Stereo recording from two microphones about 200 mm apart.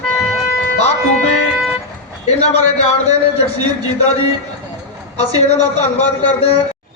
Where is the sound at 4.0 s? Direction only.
30° left (ahead or behind).